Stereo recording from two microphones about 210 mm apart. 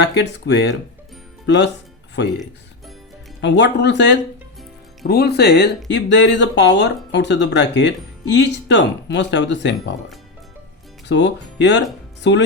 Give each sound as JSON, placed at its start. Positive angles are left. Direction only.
{"t": 0.0, "sound": "speech", "side_deg": 55}
{"t": 3.4, "sound": "speech", "side_deg": 55}
{"t": 11.1, "sound": "speech", "side_deg": 55}